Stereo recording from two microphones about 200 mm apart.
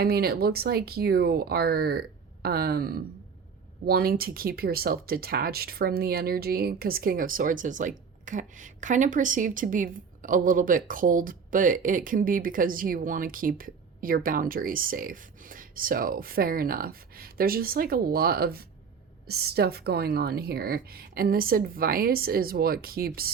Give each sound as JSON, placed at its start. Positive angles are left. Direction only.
{"t": 0.0, "sound": "speech", "side_deg": -50}